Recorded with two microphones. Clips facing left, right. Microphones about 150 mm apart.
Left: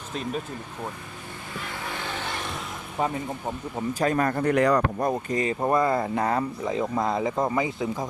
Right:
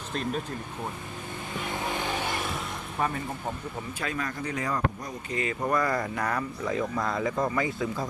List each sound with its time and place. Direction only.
1.5 s vehicle: 20° right (ahead or behind)
3.8 s speech: 40° left (ahead or behind); by 5.1 s 65° left (ahead or behind)
5.3 s speech: 35° left (ahead or behind); by 8.0 s 20° left (ahead or behind)